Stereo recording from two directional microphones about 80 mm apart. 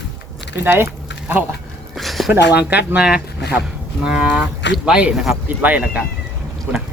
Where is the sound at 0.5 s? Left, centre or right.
Right.